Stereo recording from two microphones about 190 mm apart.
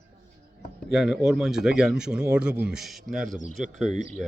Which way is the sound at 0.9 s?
Centre (ahead or behind).